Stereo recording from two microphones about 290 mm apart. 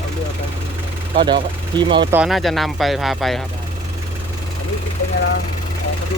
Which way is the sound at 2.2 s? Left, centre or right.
Centre.